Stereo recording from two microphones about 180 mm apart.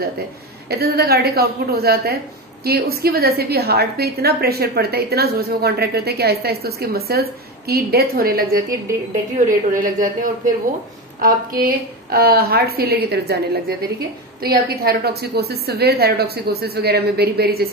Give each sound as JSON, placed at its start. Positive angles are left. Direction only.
{"t": 0.7, "sound": "a woman's voice", "side_deg": -60}
{"t": 9.7, "sound": "a woman's voice", "side_deg": -45}